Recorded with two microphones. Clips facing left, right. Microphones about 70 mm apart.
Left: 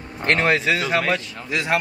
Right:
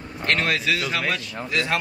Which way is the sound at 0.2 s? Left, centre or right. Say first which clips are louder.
Left 4 dB; left.